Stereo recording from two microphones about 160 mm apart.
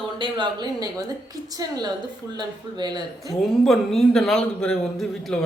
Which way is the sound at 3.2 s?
Centre (ahead or behind).